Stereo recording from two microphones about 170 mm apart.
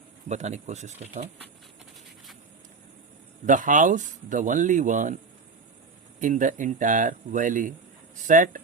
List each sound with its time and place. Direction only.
0.3 s speech: 40° right (ahead or behind)
3.4 s speech: 50° right (ahead or behind)
6.1 s speech: 50° right (ahead or behind)